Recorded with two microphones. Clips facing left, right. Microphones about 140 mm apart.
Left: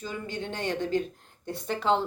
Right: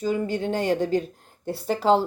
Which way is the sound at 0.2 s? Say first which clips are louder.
Right 9 dB; 40° right (ahead or behind).